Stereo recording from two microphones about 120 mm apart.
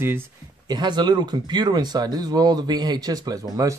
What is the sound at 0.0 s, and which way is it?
Speech, 20° right (ahead or behind).